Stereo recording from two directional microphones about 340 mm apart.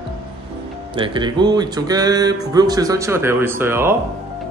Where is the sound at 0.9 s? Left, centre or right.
Centre.